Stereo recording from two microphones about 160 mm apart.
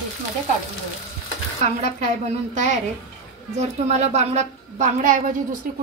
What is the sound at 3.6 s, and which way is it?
A woman's voice, 45° right (ahead or behind).